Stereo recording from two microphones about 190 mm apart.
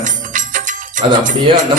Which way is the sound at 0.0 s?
45° right (ahead or behind).